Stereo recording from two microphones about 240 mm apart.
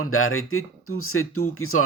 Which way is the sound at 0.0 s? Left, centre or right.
Left.